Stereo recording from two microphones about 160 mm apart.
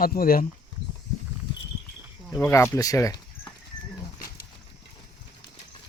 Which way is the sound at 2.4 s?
15° left (ahead or behind).